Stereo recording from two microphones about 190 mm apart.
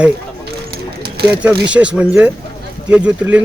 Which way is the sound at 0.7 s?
55° right (ahead or behind).